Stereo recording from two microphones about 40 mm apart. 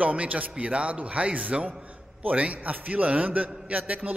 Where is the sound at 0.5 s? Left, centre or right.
Right.